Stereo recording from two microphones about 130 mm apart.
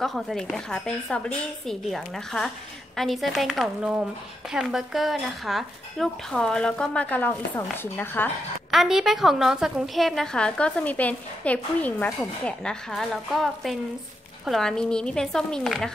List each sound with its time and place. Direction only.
0.0 s speech: centre (ahead or behind)
8.7 s speech: 5° right (ahead or behind)